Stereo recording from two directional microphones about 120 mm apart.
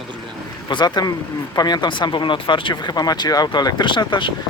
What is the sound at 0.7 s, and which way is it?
Speech, 35° left (ahead or behind).